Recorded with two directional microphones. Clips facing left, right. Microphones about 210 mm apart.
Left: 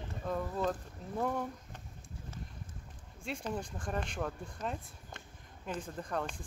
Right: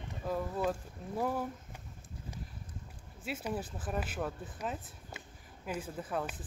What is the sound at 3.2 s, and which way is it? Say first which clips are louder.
Speech: right 1 dB; 5° right (ahead or behind).